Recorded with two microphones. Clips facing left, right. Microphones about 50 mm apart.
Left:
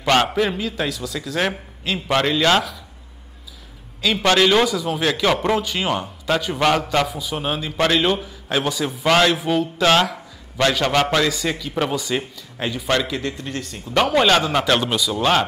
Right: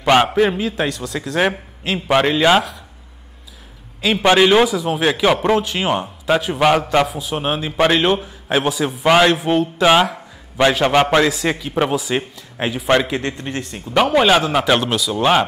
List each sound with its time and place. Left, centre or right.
0.0 s speech: centre
0.8 s speech: centre
1.4 s speech: centre
4.0 s a man's voice: centre
9.8 s a sound: centre
10.7 s a man's voice: right
11.7 s a man's voice: centre
13.9 s speech: centre